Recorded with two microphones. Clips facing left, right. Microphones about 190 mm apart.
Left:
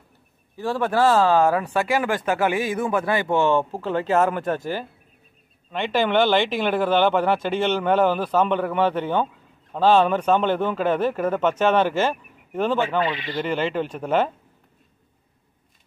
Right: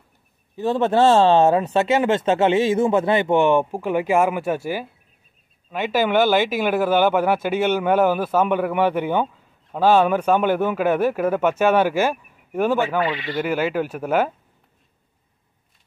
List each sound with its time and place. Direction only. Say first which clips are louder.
0.6 s speech: right 4 dB; 20° right (ahead or behind)